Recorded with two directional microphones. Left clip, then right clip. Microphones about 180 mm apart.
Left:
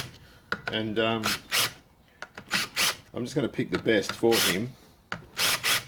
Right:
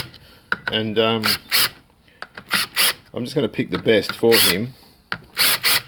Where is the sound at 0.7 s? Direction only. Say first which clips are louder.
Right 8 dB; 45° right (ahead or behind).